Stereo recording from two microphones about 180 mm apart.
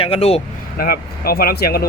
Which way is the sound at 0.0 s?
35° left (ahead or behind).